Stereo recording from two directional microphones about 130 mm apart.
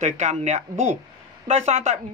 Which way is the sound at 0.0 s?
60° right (ahead or behind).